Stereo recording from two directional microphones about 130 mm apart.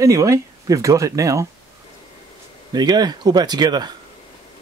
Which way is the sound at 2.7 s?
30° right (ahead or behind).